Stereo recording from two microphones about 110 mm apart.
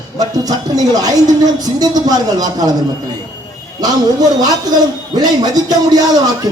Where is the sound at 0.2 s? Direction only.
35° right (ahead or behind).